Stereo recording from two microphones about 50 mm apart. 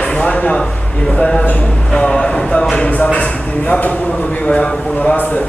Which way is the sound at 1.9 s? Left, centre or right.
Centre.